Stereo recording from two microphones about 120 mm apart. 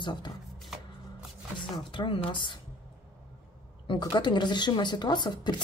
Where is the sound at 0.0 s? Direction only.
40° left (ahead or behind).